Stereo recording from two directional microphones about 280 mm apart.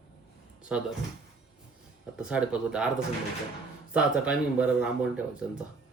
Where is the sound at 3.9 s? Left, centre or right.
Centre.